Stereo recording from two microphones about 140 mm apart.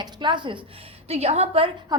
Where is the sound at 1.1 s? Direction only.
50° right (ahead or behind).